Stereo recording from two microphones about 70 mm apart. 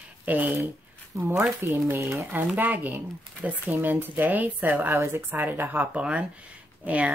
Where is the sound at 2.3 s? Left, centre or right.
Right.